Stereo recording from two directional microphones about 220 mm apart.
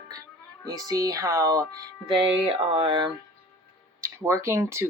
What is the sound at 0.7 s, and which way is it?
Speech, 15° right (ahead or behind).